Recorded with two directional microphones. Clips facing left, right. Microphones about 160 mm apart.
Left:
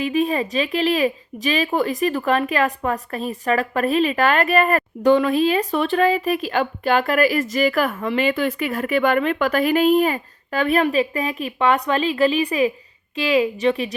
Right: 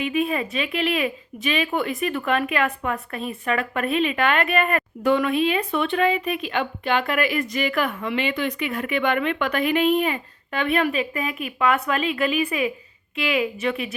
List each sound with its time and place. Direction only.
0.0 s a woman's voice: 35° left (ahead or behind)